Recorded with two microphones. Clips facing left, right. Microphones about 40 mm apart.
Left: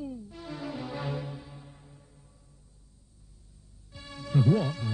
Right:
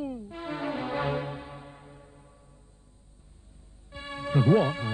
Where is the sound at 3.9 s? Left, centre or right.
Right.